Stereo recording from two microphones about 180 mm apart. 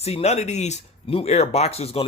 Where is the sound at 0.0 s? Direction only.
35° left (ahead or behind).